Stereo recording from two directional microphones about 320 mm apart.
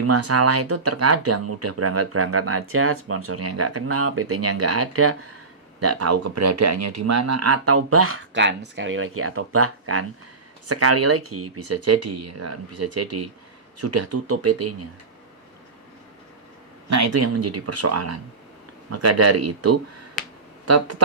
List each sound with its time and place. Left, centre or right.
0.0 s speech: right
16.9 s speech: right
20.7 s speech: right